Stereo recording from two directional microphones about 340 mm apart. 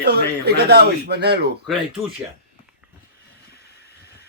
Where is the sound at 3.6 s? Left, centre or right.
Left.